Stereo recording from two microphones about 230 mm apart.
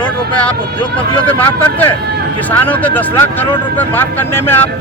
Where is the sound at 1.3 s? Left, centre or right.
Centre.